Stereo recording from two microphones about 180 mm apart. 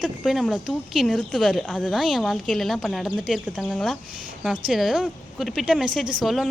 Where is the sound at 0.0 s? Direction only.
Centre (ahead or behind).